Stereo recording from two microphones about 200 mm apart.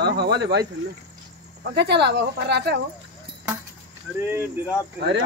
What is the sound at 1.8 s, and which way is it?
Speech, 60° right (ahead or behind).